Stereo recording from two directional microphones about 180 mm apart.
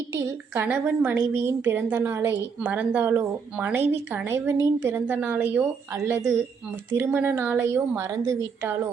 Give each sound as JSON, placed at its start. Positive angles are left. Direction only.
{"t": 0.1, "sound": "a woman's voice", "side_deg": -10}